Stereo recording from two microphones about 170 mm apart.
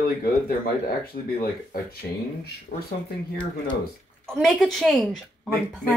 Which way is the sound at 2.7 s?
50° left (ahead or behind).